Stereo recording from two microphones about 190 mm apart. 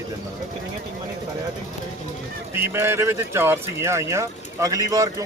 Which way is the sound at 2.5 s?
10° right (ahead or behind).